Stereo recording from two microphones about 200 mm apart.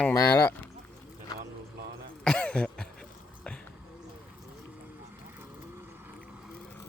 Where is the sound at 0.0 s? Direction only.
10° left (ahead or behind).